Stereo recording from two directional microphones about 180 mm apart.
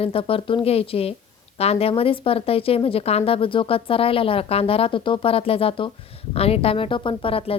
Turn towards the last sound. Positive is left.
turn(degrees=30)  # may be behind; listen again after turning